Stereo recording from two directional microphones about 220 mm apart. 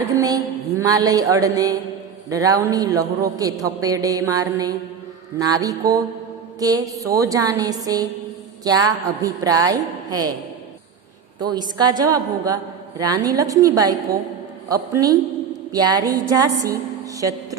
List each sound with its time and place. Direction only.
0.1 s a sound: 15° right (ahead or behind)
0.8 s a man's voice: 15° right (ahead or behind)
11.3 s a woman's voice: 20° right (ahead or behind)